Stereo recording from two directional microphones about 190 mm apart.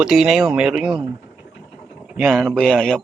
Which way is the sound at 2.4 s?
Centre (ahead or behind).